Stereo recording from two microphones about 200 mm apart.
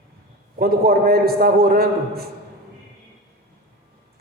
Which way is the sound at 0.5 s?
50° right (ahead or behind).